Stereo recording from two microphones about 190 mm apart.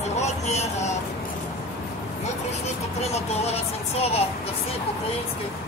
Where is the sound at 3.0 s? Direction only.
35° left (ahead or behind).